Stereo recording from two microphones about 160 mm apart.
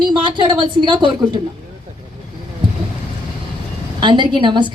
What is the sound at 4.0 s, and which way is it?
Speech, 30° right (ahead or behind).